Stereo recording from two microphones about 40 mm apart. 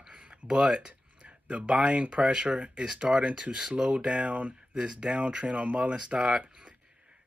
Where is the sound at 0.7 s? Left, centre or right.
Right.